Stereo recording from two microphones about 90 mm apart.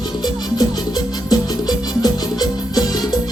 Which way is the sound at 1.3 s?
45° left (ahead or behind).